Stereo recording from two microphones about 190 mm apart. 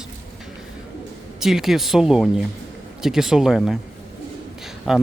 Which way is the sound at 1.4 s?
Centre (ahead or behind).